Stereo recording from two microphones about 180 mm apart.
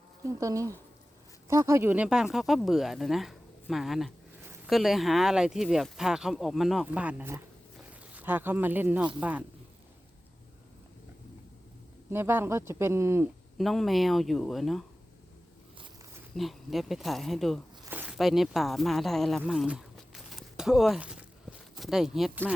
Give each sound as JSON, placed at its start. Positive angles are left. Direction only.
{"t": 0.3, "sound": "speech", "side_deg": -20}
{"t": 12.1, "sound": "speech", "side_deg": -10}
{"t": 13.6, "sound": "speech", "side_deg": 0}
{"t": 16.3, "sound": "speech", "side_deg": 0}
{"t": 19.4, "sound": "a sound", "side_deg": -5}
{"t": 21.8, "sound": "speech", "side_deg": 0}